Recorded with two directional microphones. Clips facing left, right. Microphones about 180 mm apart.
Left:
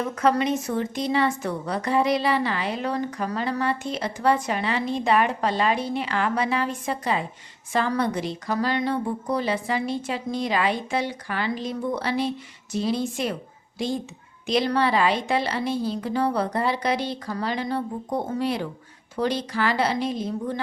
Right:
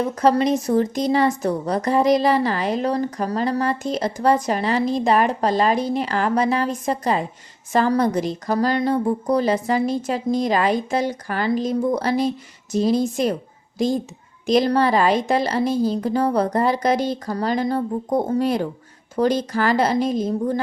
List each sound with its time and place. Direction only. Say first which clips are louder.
0.0 s a woman's voice: right 4 dB; 35° right (ahead or behind)